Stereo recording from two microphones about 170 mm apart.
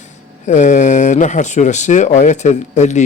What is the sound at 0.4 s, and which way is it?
Speech, 45° left (ahead or behind).